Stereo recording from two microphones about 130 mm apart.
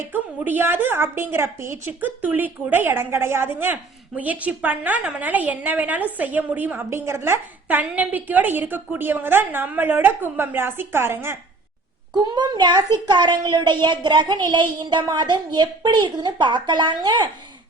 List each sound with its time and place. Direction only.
0.1 s a woman's voice: 15° right (ahead or behind)
12.3 s a child's voice: 35° right (ahead or behind)